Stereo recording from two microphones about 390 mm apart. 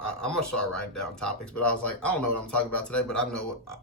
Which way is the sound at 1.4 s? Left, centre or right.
Left.